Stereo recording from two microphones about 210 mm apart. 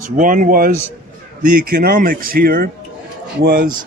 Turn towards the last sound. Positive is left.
turn(degrees=-55)  # may be behind; listen again after turning